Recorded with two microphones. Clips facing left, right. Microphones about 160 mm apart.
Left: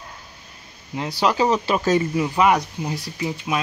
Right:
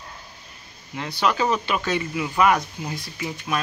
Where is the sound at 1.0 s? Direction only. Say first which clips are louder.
Left 3 dB; 30° left (ahead or behind).